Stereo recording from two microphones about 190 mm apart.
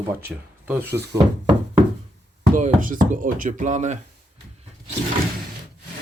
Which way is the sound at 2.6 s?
45° right (ahead or behind).